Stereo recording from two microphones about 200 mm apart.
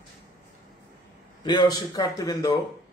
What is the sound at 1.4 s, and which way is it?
A man's voice, 20° left (ahead or behind).